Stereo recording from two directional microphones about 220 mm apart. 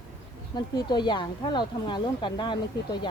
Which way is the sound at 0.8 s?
20° left (ahead or behind).